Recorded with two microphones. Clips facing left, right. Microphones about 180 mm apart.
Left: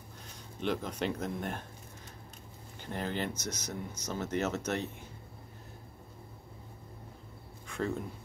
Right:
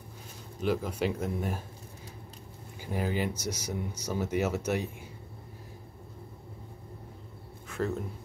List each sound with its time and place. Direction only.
0.6 s speech: 5° right (ahead or behind)
2.8 s speech: 10° right (ahead or behind)
7.6 s a sound: centre (ahead or behind)